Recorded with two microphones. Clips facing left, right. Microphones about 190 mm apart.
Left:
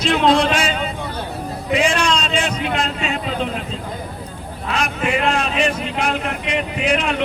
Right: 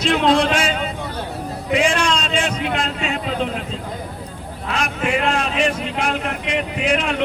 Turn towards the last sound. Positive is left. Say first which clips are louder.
# left 1 dB
turn(degrees=-50)  # may be behind; listen again after turning